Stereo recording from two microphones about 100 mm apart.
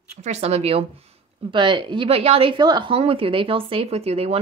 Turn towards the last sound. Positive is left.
turn(degrees=-85)